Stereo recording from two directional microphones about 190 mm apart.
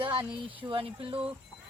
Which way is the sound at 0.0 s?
25° right (ahead or behind).